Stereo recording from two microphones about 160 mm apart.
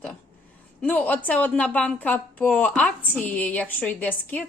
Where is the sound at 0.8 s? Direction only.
10° left (ahead or behind).